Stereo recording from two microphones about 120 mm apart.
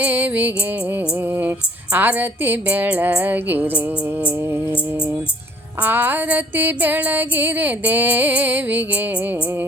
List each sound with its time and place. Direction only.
0.0 s music: 15° right (ahead or behind)
5.8 s music: 15° right (ahead or behind)